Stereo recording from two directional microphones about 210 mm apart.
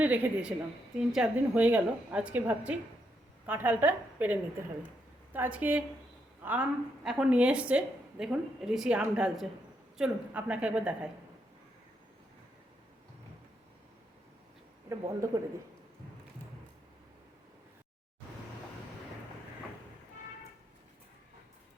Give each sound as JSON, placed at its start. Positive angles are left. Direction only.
{"t": 0.0, "sound": "a woman's voice", "side_deg": -10}
{"t": 14.8, "sound": "speech", "side_deg": -15}